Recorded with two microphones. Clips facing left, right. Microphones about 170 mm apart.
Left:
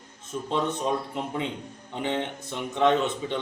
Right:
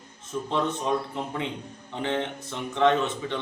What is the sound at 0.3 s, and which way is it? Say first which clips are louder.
Speech: even; 15° left (ahead or behind).